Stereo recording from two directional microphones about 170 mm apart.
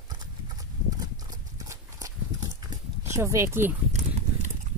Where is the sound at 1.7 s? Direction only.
20° right (ahead or behind).